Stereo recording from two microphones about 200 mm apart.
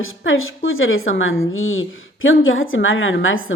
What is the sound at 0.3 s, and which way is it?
Speech, 85° left.